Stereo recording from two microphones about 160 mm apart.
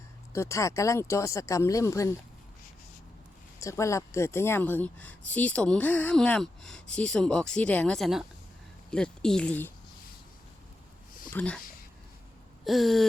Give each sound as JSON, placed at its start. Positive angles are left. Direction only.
{"t": 0.3, "sound": "speech", "side_deg": 20}
{"t": 3.6, "sound": "a woman's voice", "side_deg": 20}
{"t": 11.3, "sound": "a woman's voice", "side_deg": 10}
{"t": 12.6, "sound": "speech", "side_deg": 0}